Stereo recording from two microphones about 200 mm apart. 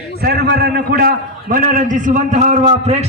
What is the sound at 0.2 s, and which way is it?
A man's voice, 50° right (ahead or behind).